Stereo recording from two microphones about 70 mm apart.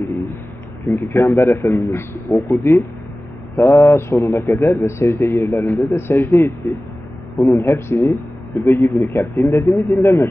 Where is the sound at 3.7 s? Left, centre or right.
Left.